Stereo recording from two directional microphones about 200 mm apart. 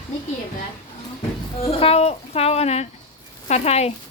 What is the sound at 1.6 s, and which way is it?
Music, 30° left (ahead or behind).